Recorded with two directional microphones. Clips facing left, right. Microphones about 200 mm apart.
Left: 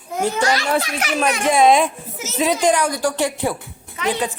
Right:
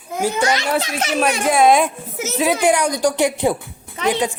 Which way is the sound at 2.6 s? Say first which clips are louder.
Right 2 dB; 15° right (ahead or behind).